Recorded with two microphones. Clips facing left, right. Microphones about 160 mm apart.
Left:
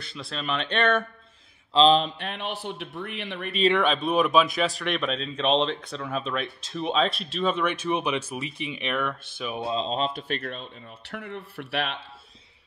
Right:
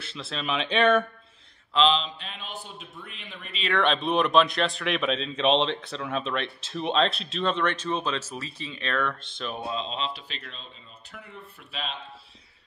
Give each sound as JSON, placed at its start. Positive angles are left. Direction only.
{"t": 0.0, "sound": "speech", "side_deg": 0}
{"t": 1.7, "sound": "mantra", "side_deg": 35}
{"t": 2.0, "sound": "speech", "side_deg": 60}
{"t": 3.8, "sound": "speech", "side_deg": 0}
{"t": 9.7, "sound": "speech", "side_deg": 35}